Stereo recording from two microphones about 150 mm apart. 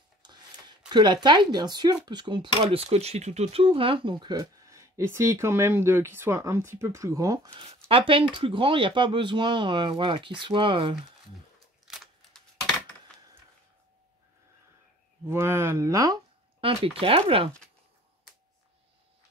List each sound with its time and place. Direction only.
0.2 s a sound: 30° right (ahead or behind)
2.0 s speech: 30° right (ahead or behind)
7.5 s speech: 40° right (ahead or behind)
15.2 s speech: 15° right (ahead or behind)
16.6 s speech: 35° right (ahead or behind)